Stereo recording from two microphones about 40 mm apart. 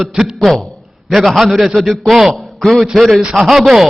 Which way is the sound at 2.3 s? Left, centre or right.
Centre.